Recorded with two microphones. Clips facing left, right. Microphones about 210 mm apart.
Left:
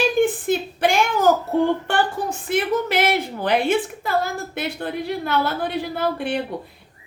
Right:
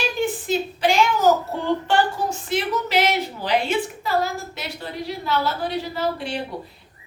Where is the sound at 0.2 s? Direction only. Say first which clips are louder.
Left 4 dB; 55° left (ahead or behind).